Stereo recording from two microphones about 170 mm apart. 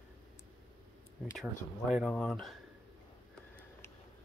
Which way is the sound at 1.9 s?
Centre (ahead or behind).